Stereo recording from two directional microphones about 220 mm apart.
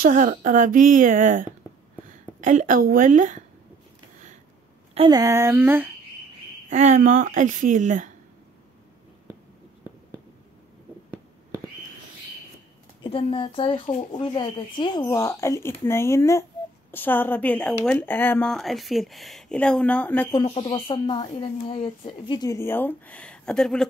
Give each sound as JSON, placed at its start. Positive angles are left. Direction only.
{"t": 0.0, "sound": "speech", "side_deg": -40}
{"t": 4.9, "sound": "speech", "side_deg": -20}
{"t": 6.7, "sound": "speech", "side_deg": -35}
{"t": 13.0, "sound": "speech", "side_deg": 25}
{"t": 20.3, "sound": "speech", "side_deg": 25}